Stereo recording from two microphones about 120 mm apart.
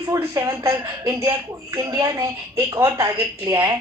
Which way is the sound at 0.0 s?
30° right (ahead or behind).